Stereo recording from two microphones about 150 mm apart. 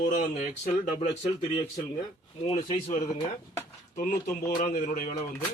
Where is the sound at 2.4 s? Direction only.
45° left (ahead or behind).